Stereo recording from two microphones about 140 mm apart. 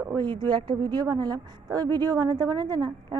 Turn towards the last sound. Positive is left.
turn(degrees=-25)  # may be behind; listen again after turning